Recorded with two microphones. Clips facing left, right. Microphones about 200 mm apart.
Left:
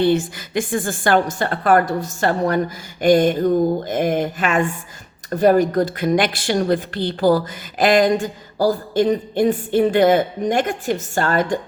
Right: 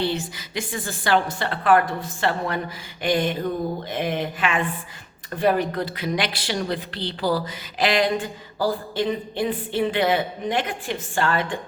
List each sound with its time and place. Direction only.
0.0 s speech: 50° left (ahead or behind)